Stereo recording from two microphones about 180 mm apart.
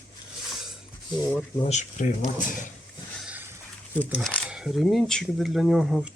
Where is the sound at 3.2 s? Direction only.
10° right (ahead or behind).